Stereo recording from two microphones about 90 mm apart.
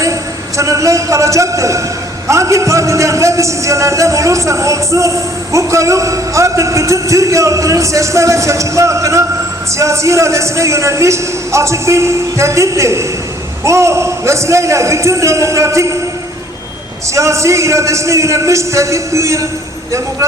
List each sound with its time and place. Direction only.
0.0 s a man's voice: 35° right (ahead or behind)
17.2 s a man's voice: 35° right (ahead or behind)